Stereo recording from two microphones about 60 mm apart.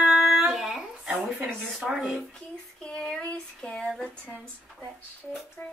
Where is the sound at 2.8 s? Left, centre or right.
Centre.